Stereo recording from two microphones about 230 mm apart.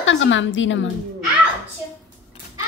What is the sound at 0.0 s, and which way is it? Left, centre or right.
Speech, left.